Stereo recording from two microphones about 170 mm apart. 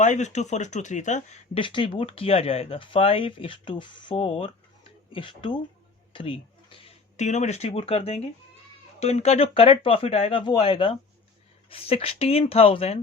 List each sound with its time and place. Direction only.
0.0 s speech: 45° left (ahead or behind)
1.5 s speech: 30° left (ahead or behind)